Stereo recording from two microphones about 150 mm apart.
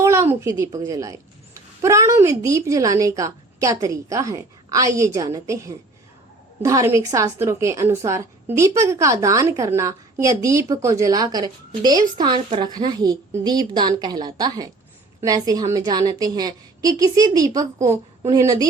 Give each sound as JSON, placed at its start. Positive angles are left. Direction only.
{"t": 0.0, "sound": "a woman's voice", "side_deg": -20}